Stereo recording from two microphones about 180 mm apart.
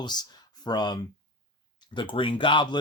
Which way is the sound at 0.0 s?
25° left (ahead or behind).